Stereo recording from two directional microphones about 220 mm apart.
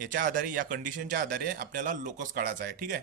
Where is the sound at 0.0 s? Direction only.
40° right (ahead or behind).